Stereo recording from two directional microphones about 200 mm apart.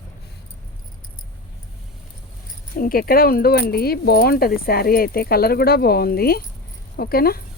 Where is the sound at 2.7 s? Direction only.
45° left (ahead or behind).